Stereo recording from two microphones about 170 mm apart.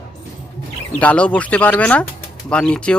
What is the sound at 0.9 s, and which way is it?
Speech, 5° left (ahead or behind).